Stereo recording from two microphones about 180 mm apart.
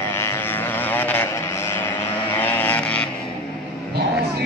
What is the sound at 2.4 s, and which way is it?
Vehicle, 10° left (ahead or behind).